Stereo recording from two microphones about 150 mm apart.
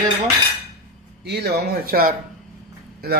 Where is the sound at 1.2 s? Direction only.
90° right.